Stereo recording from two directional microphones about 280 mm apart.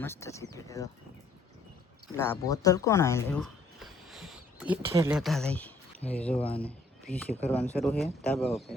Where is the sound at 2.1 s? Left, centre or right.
Centre.